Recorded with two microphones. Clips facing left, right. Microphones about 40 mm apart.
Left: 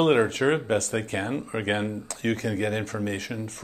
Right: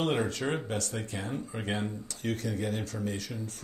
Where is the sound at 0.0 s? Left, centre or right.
Left.